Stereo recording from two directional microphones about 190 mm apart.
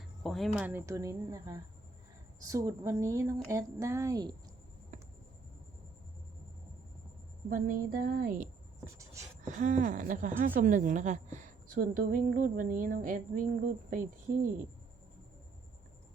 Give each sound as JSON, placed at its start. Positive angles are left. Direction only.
{"t": 0.2, "sound": "speech", "side_deg": 0}
{"t": 4.9, "sound": "a sound", "side_deg": -40}
{"t": 7.5, "sound": "speech", "side_deg": -45}